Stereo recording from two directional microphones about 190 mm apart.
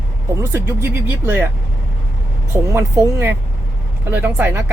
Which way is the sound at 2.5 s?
15° right (ahead or behind).